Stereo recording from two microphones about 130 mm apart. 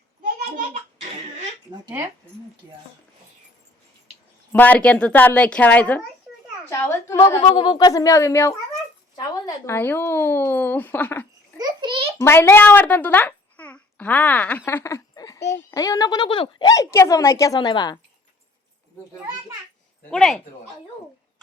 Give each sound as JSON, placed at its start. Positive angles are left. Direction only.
{"t": 4.5, "sound": "a woman's voice", "side_deg": 10}
{"t": 7.4, "sound": "speech", "side_deg": 40}
{"t": 7.8, "sound": "a woman's voice", "side_deg": 25}
{"t": 9.1, "sound": "a sound", "side_deg": 30}
{"t": 9.7, "sound": "a woman's voice", "side_deg": 15}
{"t": 11.5, "sound": "a sound", "side_deg": -35}
{"t": 12.2, "sound": "a child's voice", "side_deg": 20}
{"t": 20.1, "sound": "speech", "side_deg": 0}